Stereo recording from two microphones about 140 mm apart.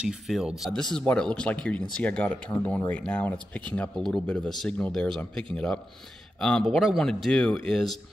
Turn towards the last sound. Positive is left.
turn(degrees=5)  # may be behind; listen again after turning